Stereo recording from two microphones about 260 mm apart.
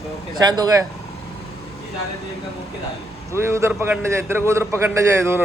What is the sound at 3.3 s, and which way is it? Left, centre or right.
A man's voice, centre.